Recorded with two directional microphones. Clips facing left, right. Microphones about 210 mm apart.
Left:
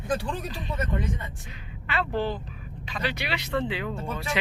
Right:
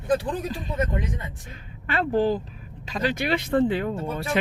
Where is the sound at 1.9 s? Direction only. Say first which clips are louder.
Right 6 dB; 45° right (ahead or behind).